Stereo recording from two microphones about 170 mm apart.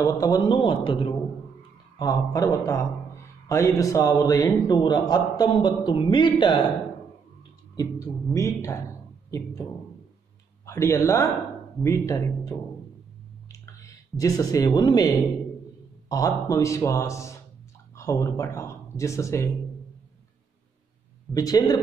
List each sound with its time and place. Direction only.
0.0 s a man's voice: 20° left (ahead or behind)
7.7 s a man's voice: 20° left (ahead or behind)
10.6 s a man's voice: 15° left (ahead or behind)
13.5 s a sound: 20° left (ahead or behind)
16.1 s a man's voice: 20° left (ahead or behind)
21.3 s a man's voice: 20° left (ahead or behind)